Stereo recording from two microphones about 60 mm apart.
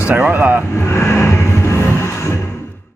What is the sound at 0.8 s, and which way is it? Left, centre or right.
Music, left.